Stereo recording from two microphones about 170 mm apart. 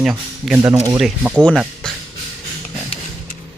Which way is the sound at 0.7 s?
20° right (ahead or behind).